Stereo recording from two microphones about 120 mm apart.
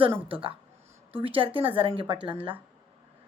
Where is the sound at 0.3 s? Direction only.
45° right (ahead or behind).